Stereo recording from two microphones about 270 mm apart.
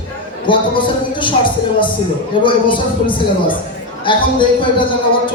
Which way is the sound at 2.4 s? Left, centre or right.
Centre.